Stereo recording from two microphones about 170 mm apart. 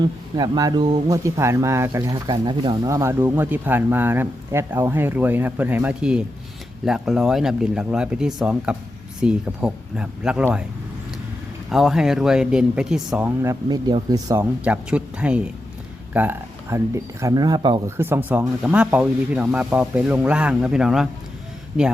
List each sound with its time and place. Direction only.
0.0 s speech: 25° right (ahead or behind); by 10.6 s 5° right (ahead or behind)
11.7 s speech: centre (ahead or behind); by 14.4 s 20° right (ahead or behind)
14.6 s speech: 5° right (ahead or behind); by 17.8 s 25° right (ahead or behind)
17.8 s speech: 15° right (ahead or behind)